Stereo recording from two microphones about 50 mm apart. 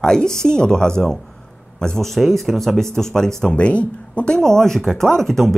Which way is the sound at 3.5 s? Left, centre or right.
Left.